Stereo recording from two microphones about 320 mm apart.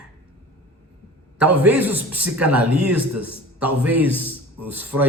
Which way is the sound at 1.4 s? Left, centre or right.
Centre.